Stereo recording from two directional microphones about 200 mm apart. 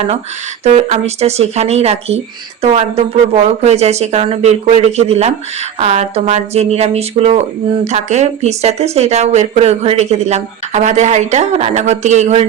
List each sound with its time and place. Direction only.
0.6 s speech: 35° right (ahead or behind)